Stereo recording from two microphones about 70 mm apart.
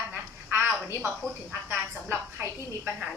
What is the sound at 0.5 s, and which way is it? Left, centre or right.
Speech, right.